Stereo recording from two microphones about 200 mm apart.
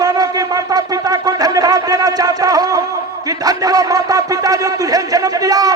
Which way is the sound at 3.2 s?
20° right (ahead or behind).